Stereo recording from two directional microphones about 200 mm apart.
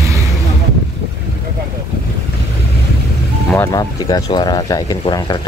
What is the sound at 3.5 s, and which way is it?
Speech, 15° left (ahead or behind).